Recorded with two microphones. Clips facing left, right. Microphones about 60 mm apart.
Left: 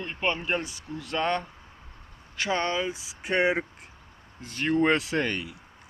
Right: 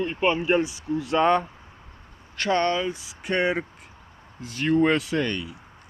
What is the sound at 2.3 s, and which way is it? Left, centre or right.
Speech, centre.